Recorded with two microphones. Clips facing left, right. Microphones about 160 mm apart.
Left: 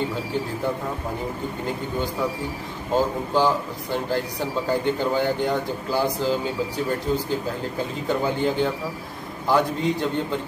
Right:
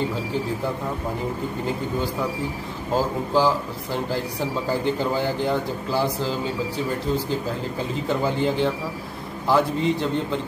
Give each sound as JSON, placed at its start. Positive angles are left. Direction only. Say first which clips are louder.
{"t": 2.9, "sound": "a man's voice", "louder": "even", "side_deg": -5}
{"t": 8.1, "sound": "a man's voice", "louder": "even", "side_deg": 0}